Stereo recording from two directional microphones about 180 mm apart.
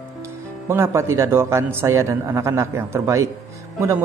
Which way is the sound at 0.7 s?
15° right (ahead or behind).